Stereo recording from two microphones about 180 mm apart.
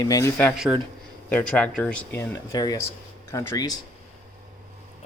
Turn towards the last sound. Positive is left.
turn(degrees=20)  # may be behind; listen again after turning